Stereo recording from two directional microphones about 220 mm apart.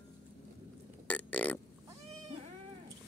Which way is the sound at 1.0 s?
5° left (ahead or behind).